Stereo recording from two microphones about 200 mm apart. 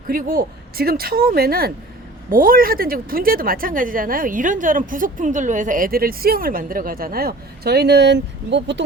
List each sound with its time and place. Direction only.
0.1 s a woman's voice: 45° right (ahead or behind)